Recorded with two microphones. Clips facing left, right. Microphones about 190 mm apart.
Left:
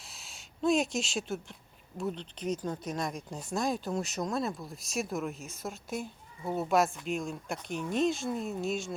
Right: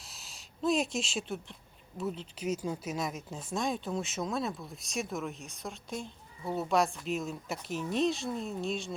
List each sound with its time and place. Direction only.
0.1 s speech: centre (ahead or behind)